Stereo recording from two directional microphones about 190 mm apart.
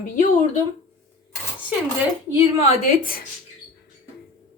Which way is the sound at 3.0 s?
50° left (ahead or behind).